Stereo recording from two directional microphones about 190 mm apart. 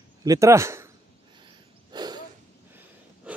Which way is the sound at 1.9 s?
20° right (ahead or behind).